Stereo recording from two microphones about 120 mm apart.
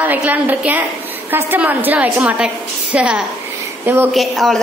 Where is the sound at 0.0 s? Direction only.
15° right (ahead or behind).